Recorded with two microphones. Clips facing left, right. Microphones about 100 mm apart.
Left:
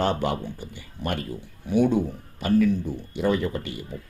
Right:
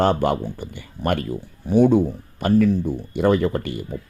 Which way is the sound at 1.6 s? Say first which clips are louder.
Right 6 dB; 40° right (ahead or behind).